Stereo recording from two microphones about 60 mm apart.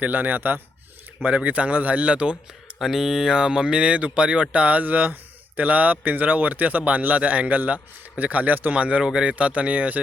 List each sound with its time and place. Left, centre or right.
0.0 s a man's voice: right
1.4 s speech: right
2.7 s speech: centre; by 10.0 s right